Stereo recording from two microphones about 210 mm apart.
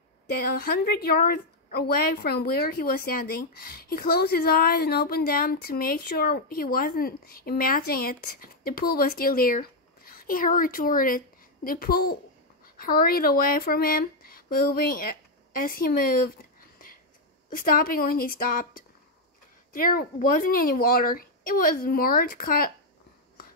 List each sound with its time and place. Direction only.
0.3 s a woman's voice: 45° left (ahead or behind)
15.6 s a sound: 45° left (ahead or behind)
17.5 s a woman's voice: 40° left (ahead or behind)